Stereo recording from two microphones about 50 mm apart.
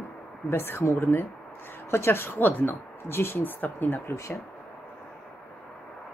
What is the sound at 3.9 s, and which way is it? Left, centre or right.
Speech, left.